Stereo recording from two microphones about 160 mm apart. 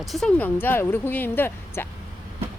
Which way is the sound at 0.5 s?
15° left (ahead or behind).